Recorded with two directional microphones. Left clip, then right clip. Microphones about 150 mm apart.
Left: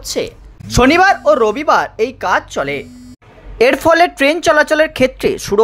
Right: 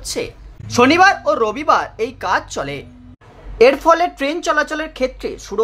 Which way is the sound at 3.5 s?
25° left (ahead or behind).